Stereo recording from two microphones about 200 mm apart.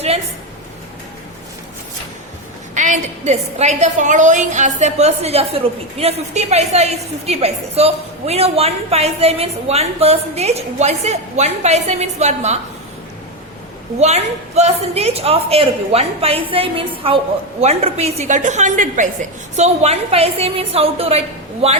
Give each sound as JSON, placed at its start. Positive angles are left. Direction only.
{"t": 2.7, "sound": "a woman's voice", "side_deg": -35}
{"t": 14.0, "sound": "a woman's voice", "side_deg": -35}